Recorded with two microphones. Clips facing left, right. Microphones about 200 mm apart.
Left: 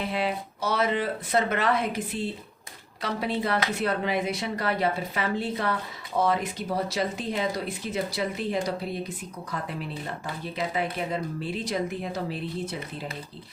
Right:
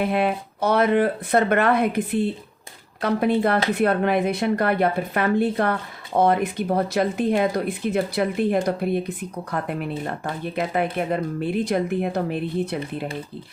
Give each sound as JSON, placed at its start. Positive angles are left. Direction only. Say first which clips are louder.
{"t": 0.0, "sound": "speech", "louder": "right 7 dB", "side_deg": -55}